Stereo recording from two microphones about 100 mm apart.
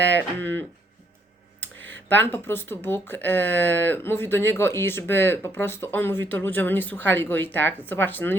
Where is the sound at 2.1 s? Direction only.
20° left (ahead or behind).